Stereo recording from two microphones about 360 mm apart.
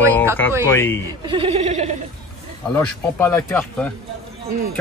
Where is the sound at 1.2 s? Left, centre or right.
Centre.